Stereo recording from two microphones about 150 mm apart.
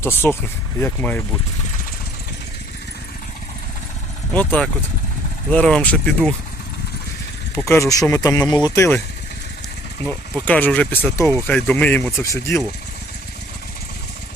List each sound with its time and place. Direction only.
0.0 s speech: 15° left (ahead or behind)
4.4 s speech: 10° left (ahead or behind)
7.5 s speech: 20° left (ahead or behind)
10.1 s speech: 10° left (ahead or behind)